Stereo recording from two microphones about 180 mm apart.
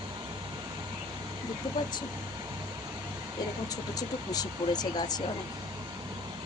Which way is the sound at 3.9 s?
20° left (ahead or behind).